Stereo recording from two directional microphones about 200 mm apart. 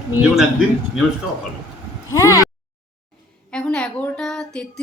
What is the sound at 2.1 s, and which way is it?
Speech, 15° left (ahead or behind).